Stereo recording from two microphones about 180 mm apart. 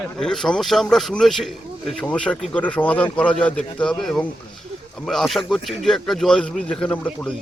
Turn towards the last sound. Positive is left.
turn(degrees=5)  # may be behind; listen again after turning